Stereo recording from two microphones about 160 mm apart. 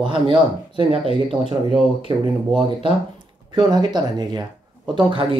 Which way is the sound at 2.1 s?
30° right (ahead or behind).